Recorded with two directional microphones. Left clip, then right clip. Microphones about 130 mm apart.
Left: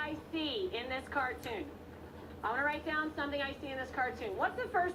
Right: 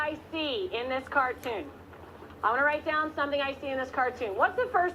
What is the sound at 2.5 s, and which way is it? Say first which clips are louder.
A woman's voice: right 8 dB; 20° left (ahead or behind).